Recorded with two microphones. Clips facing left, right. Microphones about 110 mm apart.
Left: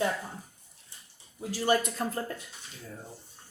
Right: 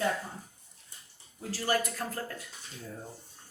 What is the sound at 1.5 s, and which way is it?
Speech, 20° left (ahead or behind).